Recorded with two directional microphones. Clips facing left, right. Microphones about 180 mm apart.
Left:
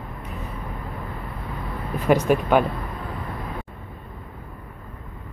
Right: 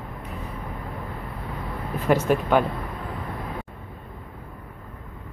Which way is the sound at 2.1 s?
15° left (ahead or behind).